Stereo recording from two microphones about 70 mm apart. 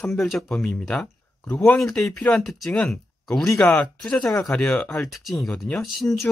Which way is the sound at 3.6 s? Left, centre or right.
Centre.